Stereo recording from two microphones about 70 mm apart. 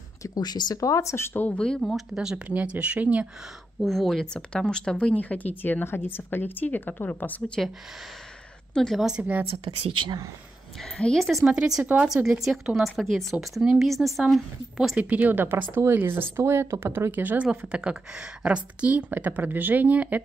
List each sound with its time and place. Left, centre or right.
0.2 s speech: left
0.7 s speech: left
1.4 s speech: centre
2.1 s speech: centre
3.8 s speech: centre; by 7.5 s left
8.7 s speech: centre
9.0 s speech: centre
9.7 s speech: right
10.8 s a woman's voice: centre
11.3 s a woman's voice: centre
15.0 s speech: right